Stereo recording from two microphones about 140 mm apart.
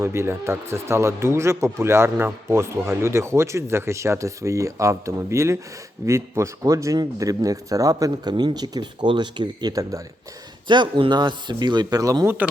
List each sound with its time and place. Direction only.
0.0 s speech: 20° right (ahead or behind)